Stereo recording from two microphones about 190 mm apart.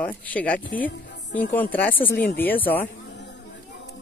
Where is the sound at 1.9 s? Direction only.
50° left (ahead or behind).